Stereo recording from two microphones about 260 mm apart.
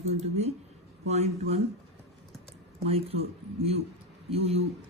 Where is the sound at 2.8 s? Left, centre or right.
Right.